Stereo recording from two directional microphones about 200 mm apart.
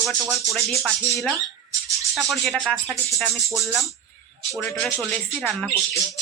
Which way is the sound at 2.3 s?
Centre (ahead or behind).